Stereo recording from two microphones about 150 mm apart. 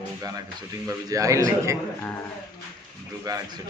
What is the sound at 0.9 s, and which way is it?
Speech, 20° right (ahead or behind).